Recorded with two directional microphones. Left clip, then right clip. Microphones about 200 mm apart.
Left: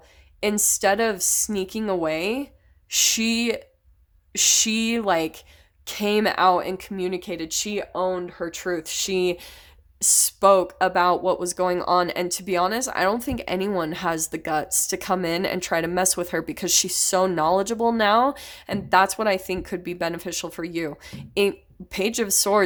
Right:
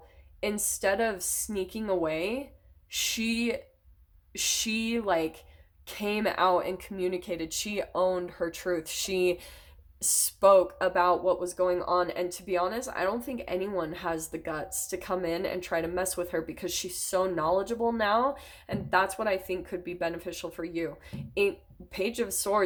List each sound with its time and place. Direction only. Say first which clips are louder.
0.3 s speech: left 8 dB; 35° left (ahead or behind)